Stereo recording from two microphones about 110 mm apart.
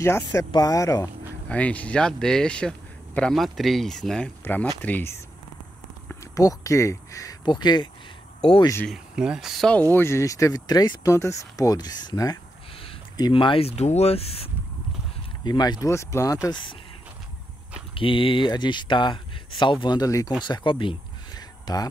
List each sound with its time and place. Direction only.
0.0 s speech: 25° left (ahead or behind)
0.5 s speech: 35° left (ahead or behind)
1.5 s speech: 10° left (ahead or behind)
4.5 s speech: 15° left (ahead or behind)
6.3 s speech: 30° left (ahead or behind)
7.4 s speech: 40° left (ahead or behind)
8.8 s speech: 5° right (ahead or behind)
9.9 s speech: 25° left (ahead or behind)
13.3 s speech: 55° left (ahead or behind)
15.4 s speech: 40° left (ahead or behind)
15.9 s speech: 25° left (ahead or behind)
17.9 s speech: 50° left (ahead or behind)